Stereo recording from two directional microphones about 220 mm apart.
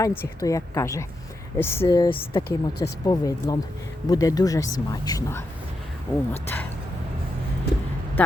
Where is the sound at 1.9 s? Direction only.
20° left (ahead or behind).